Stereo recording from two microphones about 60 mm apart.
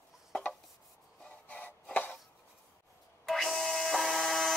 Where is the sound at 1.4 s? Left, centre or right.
Left.